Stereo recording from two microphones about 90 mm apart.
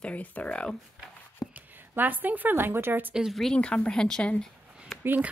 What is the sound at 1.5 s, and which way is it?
A woman's voice, 20° right (ahead or behind).